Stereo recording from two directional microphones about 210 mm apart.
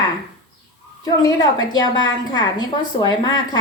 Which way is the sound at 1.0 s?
20° left (ahead or behind).